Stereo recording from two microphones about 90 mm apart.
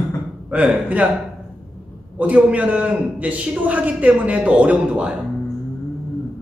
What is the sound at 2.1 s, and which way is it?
Speech, 15° right (ahead or behind).